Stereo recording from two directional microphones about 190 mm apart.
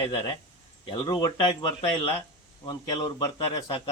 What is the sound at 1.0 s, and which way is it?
Speech, 25° left (ahead or behind).